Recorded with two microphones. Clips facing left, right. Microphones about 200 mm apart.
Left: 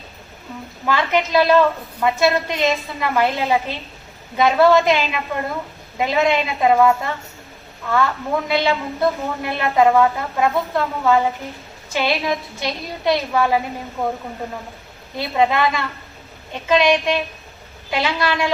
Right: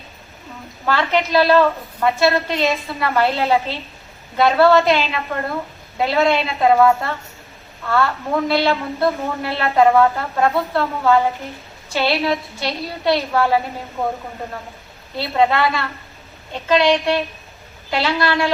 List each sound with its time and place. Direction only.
0.9 s a woman's voice: 15° left (ahead or behind)
15.2 s a woman's voice: 15° left (ahead or behind)